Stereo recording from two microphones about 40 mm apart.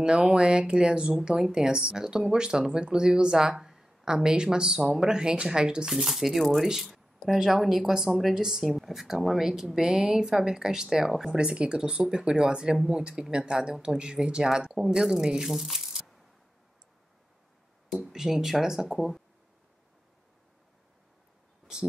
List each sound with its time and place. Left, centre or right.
0.0 s speech: right
6.0 s speech: centre
8.1 s speech: centre
11.3 s speech: right; by 15.9 s centre
18.0 s speech: centre